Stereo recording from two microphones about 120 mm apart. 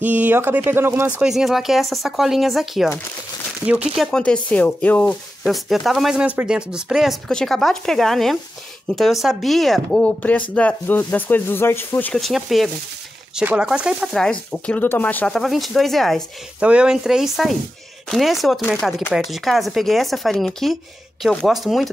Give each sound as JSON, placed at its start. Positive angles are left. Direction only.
{"t": 0.0, "sound": "speech", "side_deg": -15}
{"t": 1.2, "sound": "speech", "side_deg": 0}
{"t": 5.4, "sound": "speech", "side_deg": 0}
{"t": 12.1, "sound": "speech", "side_deg": 0}
{"t": 14.2, "sound": "speech", "side_deg": 10}
{"t": 15.3, "sound": "speech", "side_deg": 0}
{"t": 16.5, "sound": "speech", "side_deg": -10}